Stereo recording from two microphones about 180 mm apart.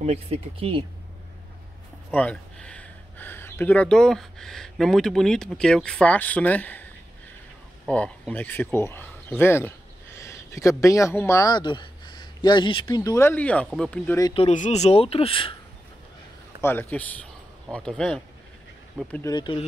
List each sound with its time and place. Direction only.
0.0 s speech: 35° right (ahead or behind)
2.0 s speech: 10° left (ahead or behind)
7.9 s speech: 10° left (ahead or behind)
14.3 s speech: 40° left (ahead or behind)
16.6 s speech: 10° left (ahead or behind)
19.2 s speech: 25° left (ahead or behind)